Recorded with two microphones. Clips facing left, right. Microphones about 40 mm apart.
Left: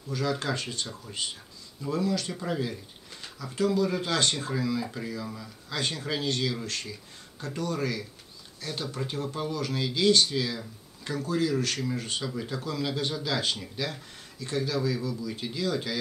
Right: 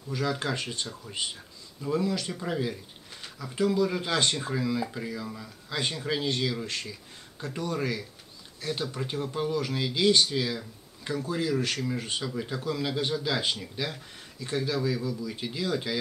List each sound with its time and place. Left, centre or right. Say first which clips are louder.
0.1 s speech: even; centre
1.9 s speech: even; centre